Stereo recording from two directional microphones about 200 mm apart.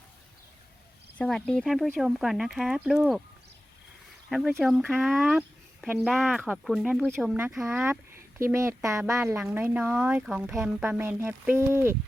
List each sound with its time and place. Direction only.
1.2 s speech: 5° left (ahead or behind)
4.3 s speech: centre (ahead or behind)